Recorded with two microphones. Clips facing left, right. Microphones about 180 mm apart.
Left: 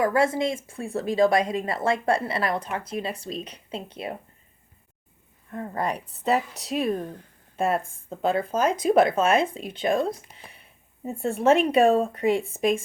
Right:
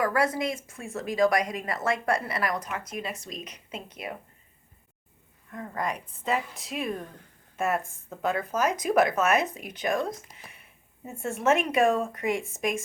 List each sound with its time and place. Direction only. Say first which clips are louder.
0.0 s a woman's voice: left 4 dB; 25° left (ahead or behind)
5.5 s a woman's voice: left 4 dB; 30° left (ahead or behind)